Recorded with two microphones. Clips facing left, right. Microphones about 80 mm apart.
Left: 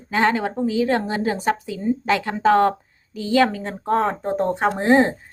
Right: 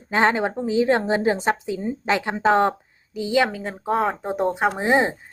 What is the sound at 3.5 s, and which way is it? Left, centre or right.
A woman's voice, centre.